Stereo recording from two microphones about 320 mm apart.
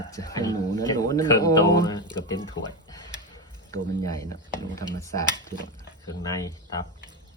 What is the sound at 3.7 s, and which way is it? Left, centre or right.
Speech, centre.